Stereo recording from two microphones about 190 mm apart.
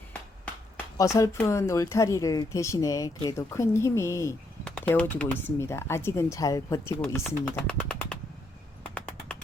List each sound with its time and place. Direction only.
0.9 s speech: 15° left (ahead or behind)